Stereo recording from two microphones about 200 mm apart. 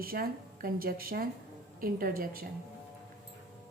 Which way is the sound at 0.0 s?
45° right (ahead or behind).